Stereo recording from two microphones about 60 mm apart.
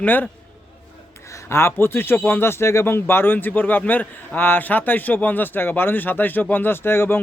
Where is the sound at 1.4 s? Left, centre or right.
Left.